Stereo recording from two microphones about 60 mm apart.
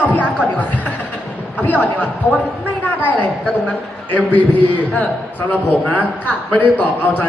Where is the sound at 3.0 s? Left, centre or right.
Left.